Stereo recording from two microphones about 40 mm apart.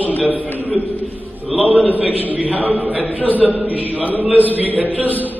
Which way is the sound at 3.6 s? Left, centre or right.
Right.